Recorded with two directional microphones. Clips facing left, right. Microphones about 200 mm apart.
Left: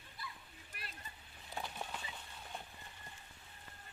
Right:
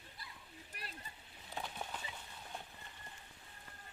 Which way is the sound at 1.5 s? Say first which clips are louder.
Even; centre (ahead or behind).